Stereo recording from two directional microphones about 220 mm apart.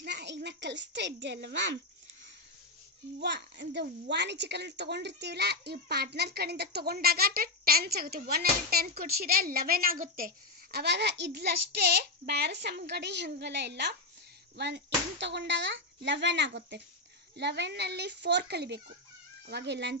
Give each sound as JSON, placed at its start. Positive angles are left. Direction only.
{"t": 0.0, "sound": "a child's voice", "side_deg": -50}
{"t": 3.2, "sound": "a child's voice", "side_deg": -50}